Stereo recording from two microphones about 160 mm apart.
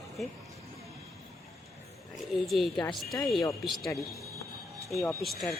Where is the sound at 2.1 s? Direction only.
Centre (ahead or behind).